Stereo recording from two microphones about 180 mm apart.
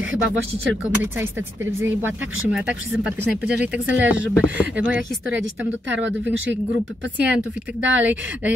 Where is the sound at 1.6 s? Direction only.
90° right.